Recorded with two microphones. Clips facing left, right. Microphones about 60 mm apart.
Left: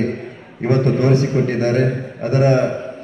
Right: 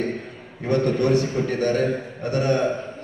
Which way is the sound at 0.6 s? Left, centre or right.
Left.